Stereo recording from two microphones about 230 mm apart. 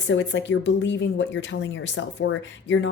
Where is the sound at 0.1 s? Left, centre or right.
Left.